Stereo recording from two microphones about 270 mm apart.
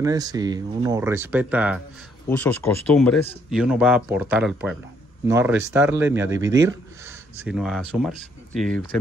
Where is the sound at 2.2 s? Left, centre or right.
Centre.